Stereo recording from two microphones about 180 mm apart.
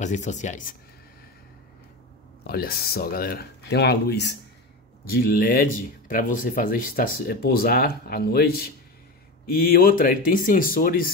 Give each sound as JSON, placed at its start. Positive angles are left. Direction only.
{"t": 0.0, "sound": "speech", "side_deg": 40}
{"t": 2.4, "sound": "speech", "side_deg": 60}
{"t": 5.0, "sound": "speech", "side_deg": 55}